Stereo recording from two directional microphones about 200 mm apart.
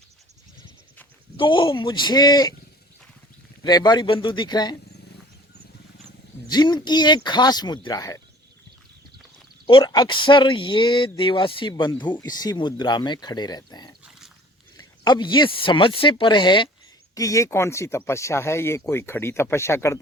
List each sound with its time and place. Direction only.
1.4 s speech: 25° left (ahead or behind)
3.6 s speech: 20° left (ahead or behind)
6.5 s speech: 20° left (ahead or behind)
9.6 s speech: 25° left (ahead or behind)